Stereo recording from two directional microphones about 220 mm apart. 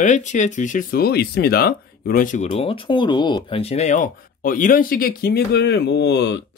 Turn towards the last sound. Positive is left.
turn(degrees=50)  # may be behind; listen again after turning